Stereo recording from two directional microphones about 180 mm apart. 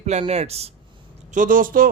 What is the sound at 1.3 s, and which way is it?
Speech, 45° right (ahead or behind).